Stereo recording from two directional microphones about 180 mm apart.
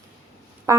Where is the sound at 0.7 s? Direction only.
15° right (ahead or behind).